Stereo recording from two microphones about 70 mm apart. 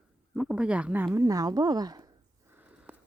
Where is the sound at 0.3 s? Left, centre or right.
Centre.